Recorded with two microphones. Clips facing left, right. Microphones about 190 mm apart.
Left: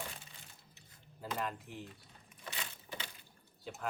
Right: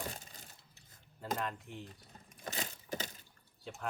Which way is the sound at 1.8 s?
40° right (ahead or behind).